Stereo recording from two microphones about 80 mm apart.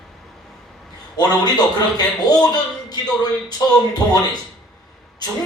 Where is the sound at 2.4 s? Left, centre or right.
Left.